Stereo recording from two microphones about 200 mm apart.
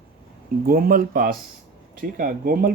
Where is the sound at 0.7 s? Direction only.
45° right (ahead or behind).